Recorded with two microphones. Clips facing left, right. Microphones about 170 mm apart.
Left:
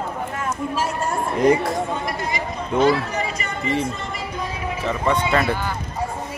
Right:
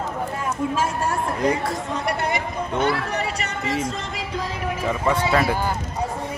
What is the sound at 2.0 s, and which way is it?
Chatter, 70° right (ahead or behind).